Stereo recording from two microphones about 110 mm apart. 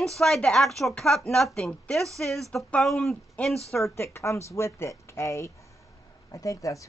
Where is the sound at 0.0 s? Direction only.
5° left (ahead or behind).